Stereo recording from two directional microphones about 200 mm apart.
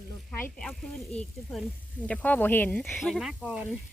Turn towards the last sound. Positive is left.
turn(degrees=-5)  # may be behind; listen again after turning